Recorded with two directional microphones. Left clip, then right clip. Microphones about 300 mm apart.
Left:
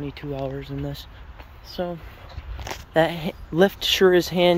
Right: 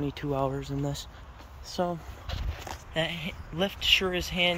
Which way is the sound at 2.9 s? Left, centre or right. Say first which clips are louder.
Left 10 dB; centre.